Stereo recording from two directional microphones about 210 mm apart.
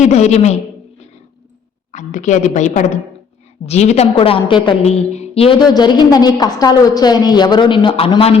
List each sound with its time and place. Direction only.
0.0 s a woman's voice: 30° left (ahead or behind)
1.9 s a woman's voice: 35° left (ahead or behind)